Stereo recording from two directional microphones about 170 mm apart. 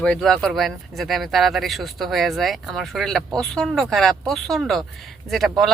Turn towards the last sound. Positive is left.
turn(degrees=0)  # may be behind; listen again after turning